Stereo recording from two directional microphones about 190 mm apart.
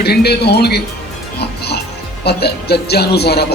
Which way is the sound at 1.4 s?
60° left (ahead or behind).